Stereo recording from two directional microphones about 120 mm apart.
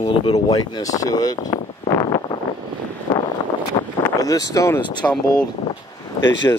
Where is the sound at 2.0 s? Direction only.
35° left (ahead or behind).